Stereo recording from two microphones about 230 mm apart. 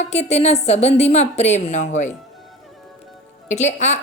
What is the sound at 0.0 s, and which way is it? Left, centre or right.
A woman's voice, left.